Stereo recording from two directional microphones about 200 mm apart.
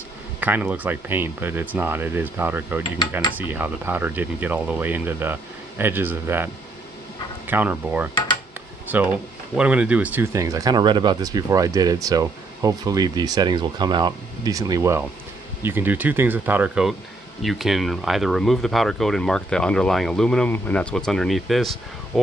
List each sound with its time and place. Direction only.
0.4 s speech: 10° right (ahead or behind)